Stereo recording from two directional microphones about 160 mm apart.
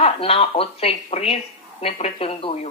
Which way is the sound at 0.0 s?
35° left (ahead or behind).